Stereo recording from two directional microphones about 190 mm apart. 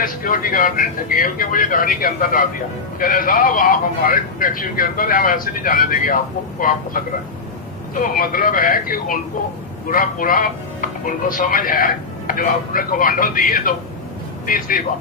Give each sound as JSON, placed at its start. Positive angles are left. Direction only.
{"t": 0.0, "sound": "speech", "side_deg": 50}